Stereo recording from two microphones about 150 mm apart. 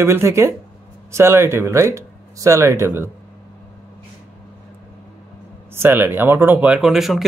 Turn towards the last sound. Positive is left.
turn(degrees=0)  # may be behind; listen again after turning